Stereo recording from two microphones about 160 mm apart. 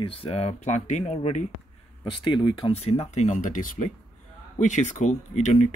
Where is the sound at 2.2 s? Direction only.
30° left (ahead or behind); by 5.6 s 50° left (ahead or behind).